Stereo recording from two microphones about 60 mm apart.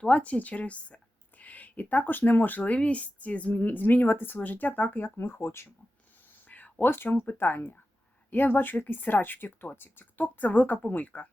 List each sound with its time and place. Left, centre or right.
0.0 s speech: left
5.1 s speech: left
6.5 s a sound: left
6.9 s speech: left